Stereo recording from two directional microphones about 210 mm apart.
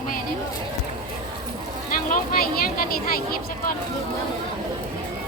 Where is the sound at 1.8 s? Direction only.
40° left (ahead or behind).